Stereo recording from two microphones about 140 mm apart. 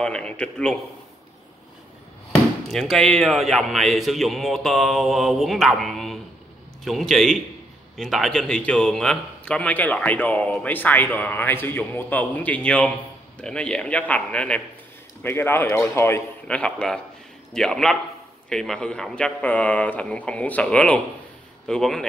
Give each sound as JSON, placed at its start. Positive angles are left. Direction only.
{"t": 0.0, "sound": "a man's voice", "side_deg": 5}
{"t": 2.7, "sound": "a man's voice", "side_deg": 0}
{"t": 16.4, "sound": "a man's voice", "side_deg": 5}